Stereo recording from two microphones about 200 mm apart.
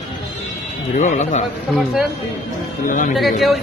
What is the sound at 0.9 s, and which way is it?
Speech, 35° left (ahead or behind).